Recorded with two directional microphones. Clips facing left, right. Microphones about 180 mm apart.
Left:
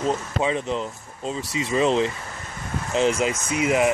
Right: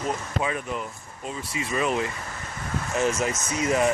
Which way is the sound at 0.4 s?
25° left (ahead or behind).